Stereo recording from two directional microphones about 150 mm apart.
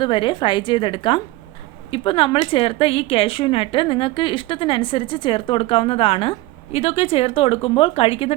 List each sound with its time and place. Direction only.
0.0 s a woman's voice: 30° left (ahead or behind)